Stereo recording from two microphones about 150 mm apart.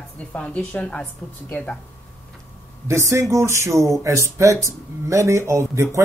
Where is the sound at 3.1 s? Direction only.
20° right (ahead or behind).